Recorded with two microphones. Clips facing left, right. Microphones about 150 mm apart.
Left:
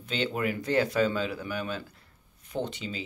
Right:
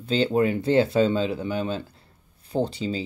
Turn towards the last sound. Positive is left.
turn(degrees=-35)  # may be behind; listen again after turning